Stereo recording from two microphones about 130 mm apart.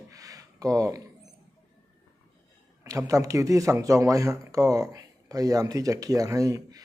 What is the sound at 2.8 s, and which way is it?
Speech, 25° right (ahead or behind).